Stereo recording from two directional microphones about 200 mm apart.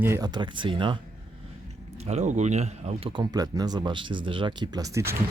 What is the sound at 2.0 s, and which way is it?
Speech, 35° right (ahead or behind).